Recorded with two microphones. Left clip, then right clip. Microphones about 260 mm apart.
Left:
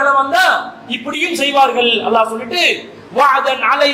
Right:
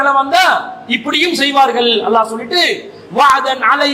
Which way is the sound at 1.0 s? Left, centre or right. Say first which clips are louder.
Right 2 dB; right.